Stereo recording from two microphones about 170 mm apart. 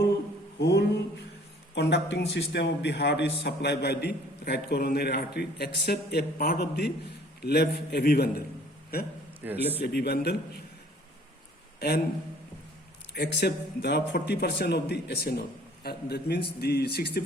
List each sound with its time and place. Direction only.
0.6 s music: 85° left
1.7 s a man's voice: 85° left
3.4 s a man's voice: 75° left (ahead or behind); by 9.1 s 60° left (ahead or behind)
9.4 s a man's voice: 10° right (ahead or behind)
9.8 s a man's voice: 70° left (ahead or behind)
11.8 s a man's voice: 70° left (ahead or behind)
13.1 s a man's voice: 70° left (ahead or behind)